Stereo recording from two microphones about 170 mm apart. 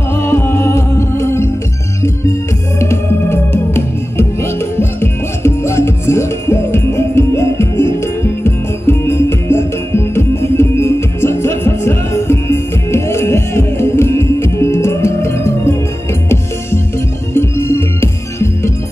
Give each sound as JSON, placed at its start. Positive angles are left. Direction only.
{"t": 0.1, "sound": "music", "side_deg": 15}
{"t": 2.8, "sound": "music", "side_deg": 15}
{"t": 17.3, "sound": "music", "side_deg": 15}